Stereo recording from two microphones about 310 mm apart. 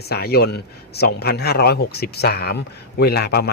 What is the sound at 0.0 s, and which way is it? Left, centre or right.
Speech, left.